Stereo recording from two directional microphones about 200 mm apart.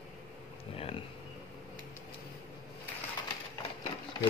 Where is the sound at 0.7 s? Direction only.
30° left (ahead or behind).